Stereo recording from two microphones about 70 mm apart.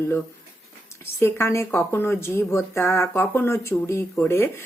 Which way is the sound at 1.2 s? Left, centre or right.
Left.